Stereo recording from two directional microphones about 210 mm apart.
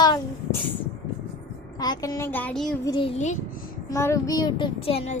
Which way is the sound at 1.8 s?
20° left (ahead or behind).